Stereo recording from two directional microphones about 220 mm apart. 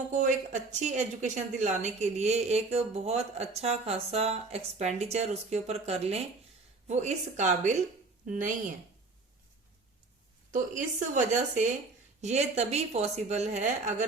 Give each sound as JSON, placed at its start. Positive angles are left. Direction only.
{"t": 0.1, "sound": "a woman's voice", "side_deg": -35}
{"t": 10.5, "sound": "a woman's voice", "side_deg": -35}